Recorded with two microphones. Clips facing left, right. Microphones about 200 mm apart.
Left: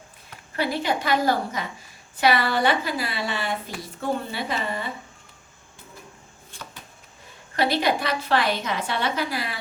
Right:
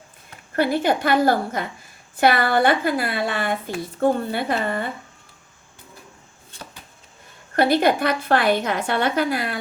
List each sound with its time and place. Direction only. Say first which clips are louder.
0.5 s a woman's voice: right 5 dB; 50° right (ahead or behind)
7.5 s a woman's voice: right 5 dB; 55° right (ahead or behind)